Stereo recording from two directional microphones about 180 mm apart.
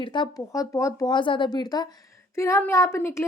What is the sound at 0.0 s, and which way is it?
A woman's voice, 25° left (ahead or behind).